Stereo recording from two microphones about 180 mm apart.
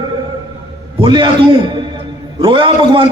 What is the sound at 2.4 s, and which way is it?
Speech, 30° right (ahead or behind).